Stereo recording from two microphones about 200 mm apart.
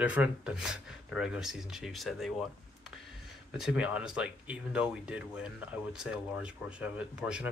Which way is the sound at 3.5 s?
5° right (ahead or behind).